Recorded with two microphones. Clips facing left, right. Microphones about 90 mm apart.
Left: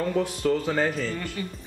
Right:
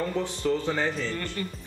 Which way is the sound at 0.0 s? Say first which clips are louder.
Left 3 dB; 5° left (ahead or behind).